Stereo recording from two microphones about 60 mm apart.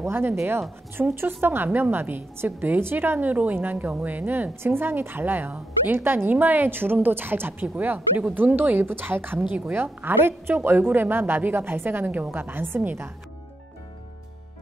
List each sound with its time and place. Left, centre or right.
0.1 s a woman's voice: right